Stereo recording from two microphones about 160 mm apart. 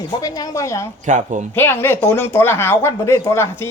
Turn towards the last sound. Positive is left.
turn(degrees=15)  # may be behind; listen again after turning